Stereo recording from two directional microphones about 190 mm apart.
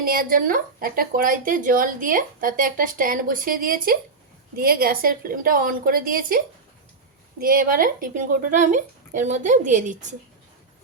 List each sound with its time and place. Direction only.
0.0 s speech: 50° right (ahead or behind)
7.4 s a woman's voice: 50° right (ahead or behind)